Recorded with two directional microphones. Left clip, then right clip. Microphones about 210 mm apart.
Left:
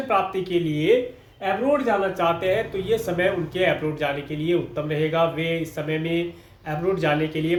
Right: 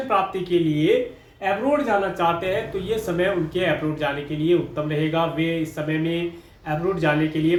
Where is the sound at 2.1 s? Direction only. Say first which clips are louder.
Even; 25° left (ahead or behind).